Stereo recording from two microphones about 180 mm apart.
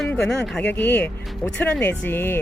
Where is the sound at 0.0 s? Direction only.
5° left (ahead or behind).